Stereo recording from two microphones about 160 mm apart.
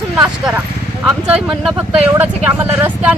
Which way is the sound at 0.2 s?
5° right (ahead or behind).